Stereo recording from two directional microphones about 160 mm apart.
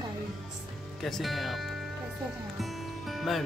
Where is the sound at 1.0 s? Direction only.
Centre (ahead or behind).